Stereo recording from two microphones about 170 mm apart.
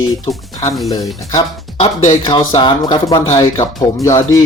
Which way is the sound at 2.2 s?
25° left (ahead or behind).